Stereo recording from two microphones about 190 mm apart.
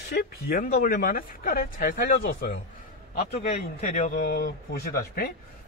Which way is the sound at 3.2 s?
40° left (ahead or behind).